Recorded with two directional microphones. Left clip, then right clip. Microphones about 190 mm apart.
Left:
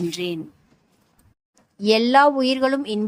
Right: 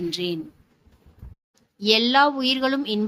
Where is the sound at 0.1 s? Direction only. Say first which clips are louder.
Even; 50° left (ahead or behind).